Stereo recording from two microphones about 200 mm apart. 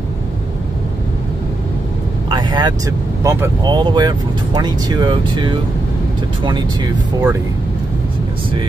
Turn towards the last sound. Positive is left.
turn(degrees=-20)  # may be behind; listen again after turning